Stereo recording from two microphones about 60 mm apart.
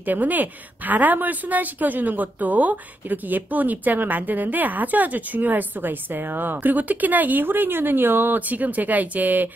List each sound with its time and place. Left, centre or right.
0.0 s a woman's voice: right